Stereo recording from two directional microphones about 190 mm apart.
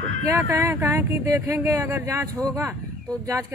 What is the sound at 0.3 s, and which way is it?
Speech, 15° right (ahead or behind).